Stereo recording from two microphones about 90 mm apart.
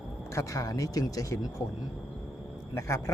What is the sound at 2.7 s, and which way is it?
Speech, 30° left (ahead or behind).